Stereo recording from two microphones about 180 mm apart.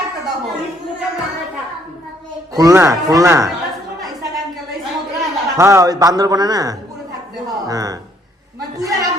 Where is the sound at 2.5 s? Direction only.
15° right (ahead or behind).